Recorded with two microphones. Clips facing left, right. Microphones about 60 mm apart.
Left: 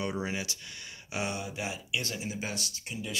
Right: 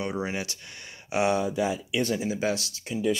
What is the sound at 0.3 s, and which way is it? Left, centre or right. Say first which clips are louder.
Speech: right 3 dB; right.